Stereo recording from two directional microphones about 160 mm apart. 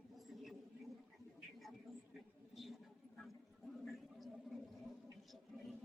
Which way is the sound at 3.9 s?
Centre (ahead or behind).